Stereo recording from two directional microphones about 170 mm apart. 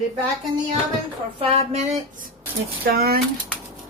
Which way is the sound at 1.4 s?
35° right (ahead or behind).